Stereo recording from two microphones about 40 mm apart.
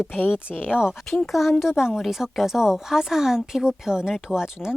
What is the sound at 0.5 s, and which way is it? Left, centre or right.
Speech, centre.